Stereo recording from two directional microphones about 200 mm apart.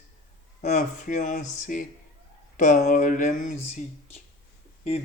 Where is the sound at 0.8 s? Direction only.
40° left (ahead or behind).